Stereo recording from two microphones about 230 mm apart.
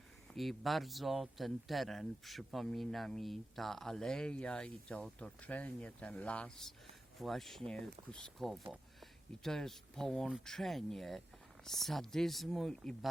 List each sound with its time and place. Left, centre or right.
0.3 s speech: centre